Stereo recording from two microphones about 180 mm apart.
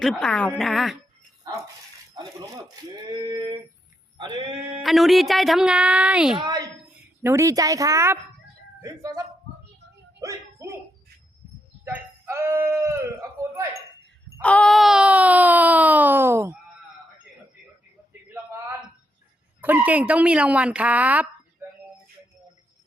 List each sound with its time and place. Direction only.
0.0 s speech: 5° left (ahead or behind)
3.3 s speech: 25° right (ahead or behind)
4.8 s speech: centre (ahead or behind)
6.4 s a woman's voice: 20° right (ahead or behind)
10.2 s dog: 15° right (ahead or behind)
11.9 s speech: 10° right (ahead or behind)
14.4 s wail: 5° left (ahead or behind); by 16.6 s 15° right (ahead or behind)
18.1 s a sound: 15° right (ahead or behind)
19.6 s speech: 10° right (ahead or behind)